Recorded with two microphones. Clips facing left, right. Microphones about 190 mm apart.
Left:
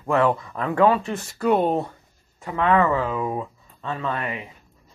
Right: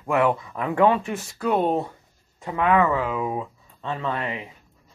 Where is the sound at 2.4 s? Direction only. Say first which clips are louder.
Even; 10° right (ahead or behind).